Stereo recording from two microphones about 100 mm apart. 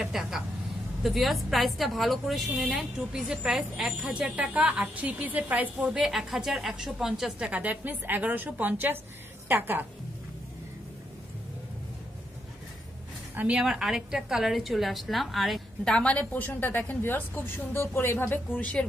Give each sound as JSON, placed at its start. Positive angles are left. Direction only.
{"t": 0.0, "sound": "vehicle", "side_deg": -5}
{"t": 1.0, "sound": "a woman's voice", "side_deg": 0}
{"t": 13.4, "sound": "a woman's voice", "side_deg": -10}